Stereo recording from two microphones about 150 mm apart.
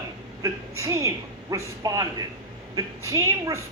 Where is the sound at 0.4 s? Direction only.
20° right (ahead or behind).